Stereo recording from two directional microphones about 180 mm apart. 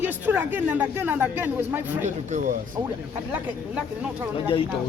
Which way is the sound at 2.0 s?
40° right (ahead or behind).